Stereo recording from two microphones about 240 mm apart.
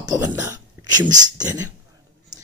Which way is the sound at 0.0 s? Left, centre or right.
Centre.